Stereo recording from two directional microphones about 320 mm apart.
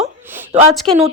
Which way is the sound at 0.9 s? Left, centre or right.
Centre.